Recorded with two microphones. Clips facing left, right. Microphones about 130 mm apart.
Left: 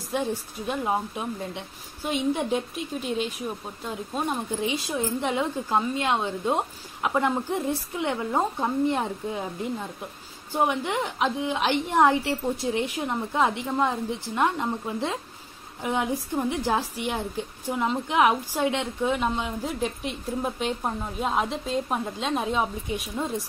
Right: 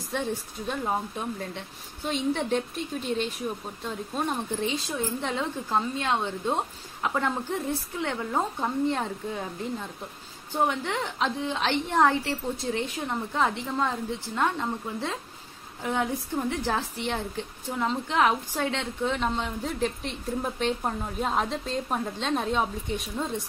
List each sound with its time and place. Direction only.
0.1 s a woman's voice: 10° left (ahead or behind)
4.8 s a woman's voice: 15° left (ahead or behind)